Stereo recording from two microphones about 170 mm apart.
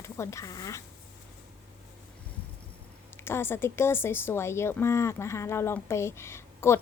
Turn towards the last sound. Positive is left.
turn(degrees=15)  # may be behind; listen again after turning